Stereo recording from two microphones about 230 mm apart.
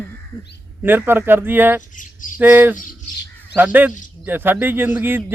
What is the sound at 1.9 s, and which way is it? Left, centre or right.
Speech, left.